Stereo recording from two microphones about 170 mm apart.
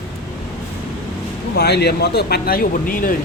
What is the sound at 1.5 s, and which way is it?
Speech, 75° left (ahead or behind).